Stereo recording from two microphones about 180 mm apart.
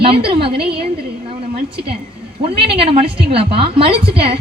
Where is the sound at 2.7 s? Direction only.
30° right (ahead or behind).